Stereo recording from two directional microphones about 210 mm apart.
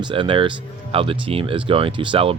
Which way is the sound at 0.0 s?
25° right (ahead or behind).